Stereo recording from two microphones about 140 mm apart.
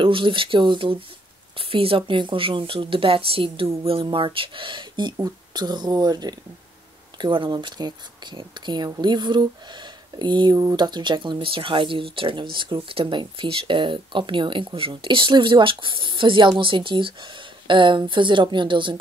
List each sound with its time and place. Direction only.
0.0 s speech: 40° right (ahead or behind)